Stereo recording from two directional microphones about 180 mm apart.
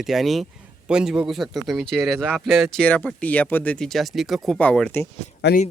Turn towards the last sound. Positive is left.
turn(degrees=70)  # may be behind; listen again after turning